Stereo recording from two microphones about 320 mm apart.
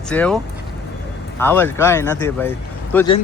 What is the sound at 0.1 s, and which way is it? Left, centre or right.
Speech, centre.